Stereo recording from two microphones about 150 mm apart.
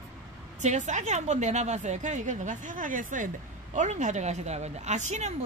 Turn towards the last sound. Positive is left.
turn(degrees=-50)  # may be behind; listen again after turning